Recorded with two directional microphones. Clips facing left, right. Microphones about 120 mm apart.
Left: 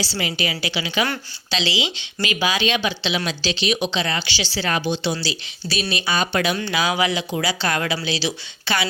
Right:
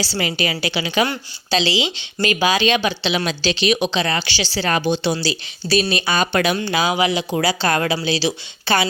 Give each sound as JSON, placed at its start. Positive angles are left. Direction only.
{"t": 0.0, "sound": "a woman's voice", "side_deg": -45}
{"t": 1.5, "sound": "a woman's voice", "side_deg": -35}
{"t": 6.1, "sound": "a woman's voice", "side_deg": -60}
{"t": 6.6, "sound": "speech", "side_deg": -30}
{"t": 7.3, "sound": "speech", "side_deg": -45}